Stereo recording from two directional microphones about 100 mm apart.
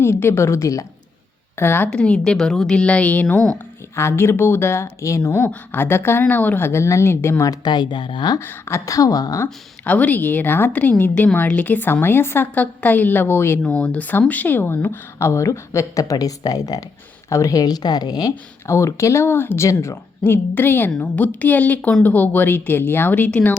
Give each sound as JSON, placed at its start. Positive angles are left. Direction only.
{"t": 0.0, "sound": "a woman's voice", "side_deg": 25}
{"t": 1.9, "sound": "a woman's voice", "side_deg": 10}
{"t": 7.6, "sound": "speech", "side_deg": 50}
{"t": 8.4, "sound": "speech", "side_deg": 25}
{"t": 9.8, "sound": "a woman's voice", "side_deg": 15}
{"t": 13.7, "sound": "a woman's voice", "side_deg": 10}
{"t": 18.7, "sound": "a woman's voice", "side_deg": 30}